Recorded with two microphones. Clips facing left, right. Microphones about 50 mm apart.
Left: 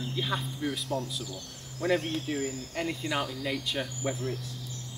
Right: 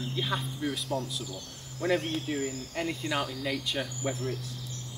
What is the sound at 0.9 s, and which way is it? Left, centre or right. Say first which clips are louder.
Speech: even; centre.